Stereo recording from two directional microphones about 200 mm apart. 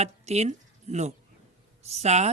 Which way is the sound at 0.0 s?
35° right (ahead or behind).